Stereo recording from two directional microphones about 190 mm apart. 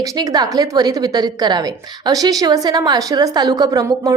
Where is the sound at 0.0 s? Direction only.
20° right (ahead or behind).